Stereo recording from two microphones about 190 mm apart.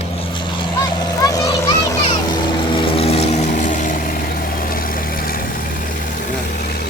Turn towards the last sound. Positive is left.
turn(degrees=55)  # may be behind; listen again after turning